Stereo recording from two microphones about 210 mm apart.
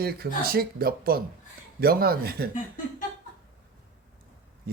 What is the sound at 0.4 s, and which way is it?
Speech, 45° right (ahead or behind).